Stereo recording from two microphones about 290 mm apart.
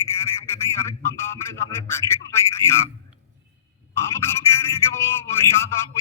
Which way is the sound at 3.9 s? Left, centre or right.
Centre.